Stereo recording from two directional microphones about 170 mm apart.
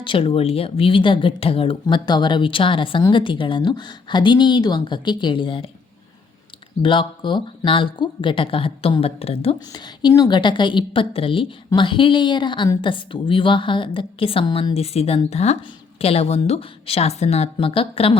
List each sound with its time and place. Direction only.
0.0 s a woman's voice: 30° left (ahead or behind)
6.8 s speech: 30° left (ahead or behind)
9.6 s a woman's voice: 25° left (ahead or behind)